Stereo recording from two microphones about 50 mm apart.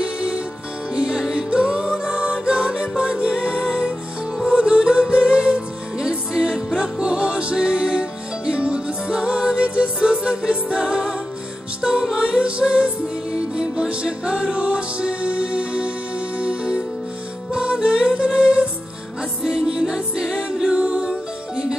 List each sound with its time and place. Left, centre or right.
0.0 s music: centre